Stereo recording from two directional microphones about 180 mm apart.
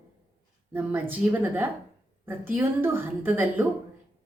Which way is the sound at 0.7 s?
10° right (ahead or behind).